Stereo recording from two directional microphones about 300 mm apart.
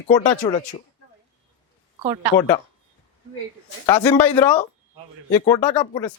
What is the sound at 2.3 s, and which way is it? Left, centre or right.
Speech, centre.